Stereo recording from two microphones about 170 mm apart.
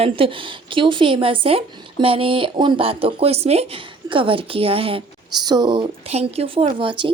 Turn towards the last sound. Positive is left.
turn(degrees=-30)  # may be behind; listen again after turning